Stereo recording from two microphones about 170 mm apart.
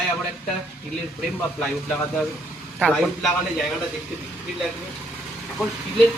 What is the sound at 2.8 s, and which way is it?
Speech, centre (ahead or behind).